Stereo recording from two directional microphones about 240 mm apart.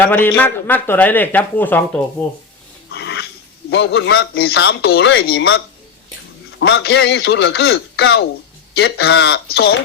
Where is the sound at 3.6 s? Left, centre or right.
Left.